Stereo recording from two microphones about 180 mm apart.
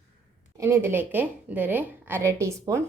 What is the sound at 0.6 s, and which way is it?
A woman's voice, 15° right (ahead or behind).